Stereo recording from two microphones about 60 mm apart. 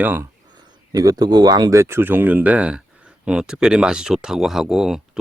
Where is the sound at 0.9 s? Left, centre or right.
Right.